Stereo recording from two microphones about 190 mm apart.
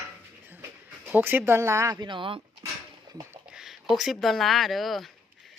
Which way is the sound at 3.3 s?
5° right (ahead or behind).